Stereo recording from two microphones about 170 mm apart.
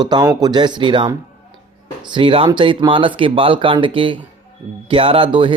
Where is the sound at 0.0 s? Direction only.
25° right (ahead or behind).